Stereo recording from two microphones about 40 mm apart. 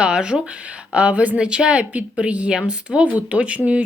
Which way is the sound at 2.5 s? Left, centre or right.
Right.